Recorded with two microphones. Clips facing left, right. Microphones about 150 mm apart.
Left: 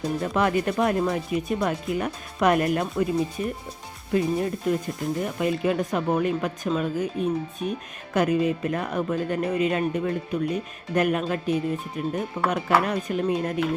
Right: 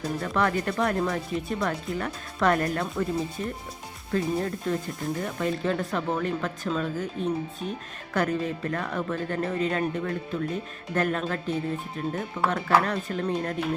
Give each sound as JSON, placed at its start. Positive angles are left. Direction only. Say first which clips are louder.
{"t": 0.2, "sound": "speech", "louder": "left 2 dB", "side_deg": 20}